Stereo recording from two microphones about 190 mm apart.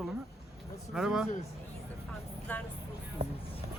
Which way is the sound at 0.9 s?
Centre (ahead or behind).